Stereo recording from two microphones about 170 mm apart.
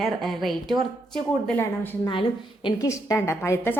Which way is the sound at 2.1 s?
30° left (ahead or behind).